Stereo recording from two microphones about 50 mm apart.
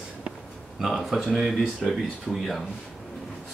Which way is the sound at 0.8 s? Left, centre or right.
Centre.